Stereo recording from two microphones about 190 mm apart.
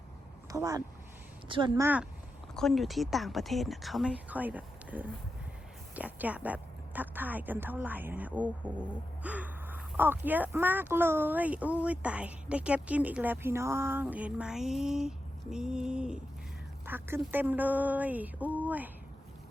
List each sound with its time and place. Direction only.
0.5 s a woman's voice: 20° right (ahead or behind)
2.6 s a woman's voice: centre (ahead or behind)